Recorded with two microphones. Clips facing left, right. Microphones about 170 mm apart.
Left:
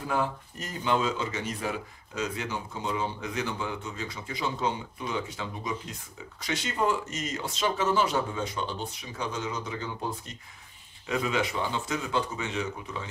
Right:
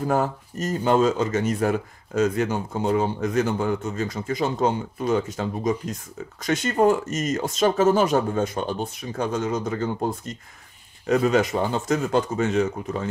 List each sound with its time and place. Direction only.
0.0 s speech: 45° right (ahead or behind)